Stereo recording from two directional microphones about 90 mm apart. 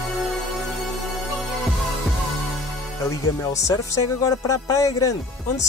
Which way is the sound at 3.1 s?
35° left (ahead or behind).